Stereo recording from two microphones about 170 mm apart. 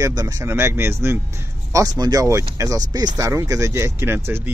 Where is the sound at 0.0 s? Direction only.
20° right (ahead or behind).